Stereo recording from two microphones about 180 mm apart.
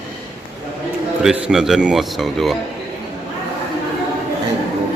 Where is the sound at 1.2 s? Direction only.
5° right (ahead or behind).